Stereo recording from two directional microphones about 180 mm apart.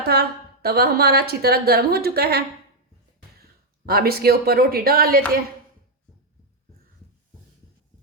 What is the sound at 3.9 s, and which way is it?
A woman's voice, 60° right (ahead or behind).